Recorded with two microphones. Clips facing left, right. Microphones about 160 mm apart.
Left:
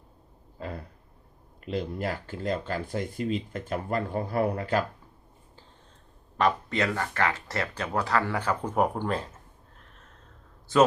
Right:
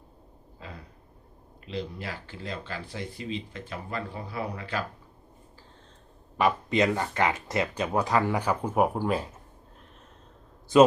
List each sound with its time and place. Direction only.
0.6 s a sound: 50° left (ahead or behind)
1.6 s speech: 45° left (ahead or behind)
6.3 s speech: 10° right (ahead or behind)